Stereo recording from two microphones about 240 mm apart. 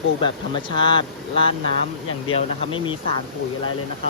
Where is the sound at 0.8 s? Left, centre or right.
Centre.